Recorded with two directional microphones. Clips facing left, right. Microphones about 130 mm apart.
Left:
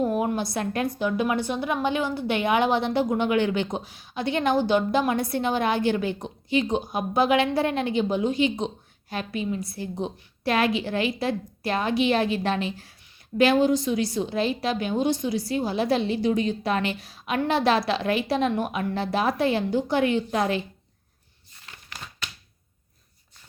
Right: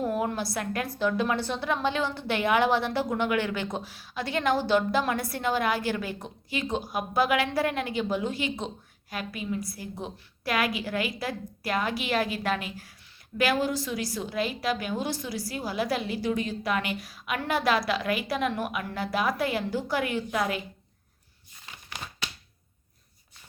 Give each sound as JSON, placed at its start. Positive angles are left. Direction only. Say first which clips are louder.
{"t": 0.0, "sound": "a woman's voice", "louder": "left 4 dB", "side_deg": 20}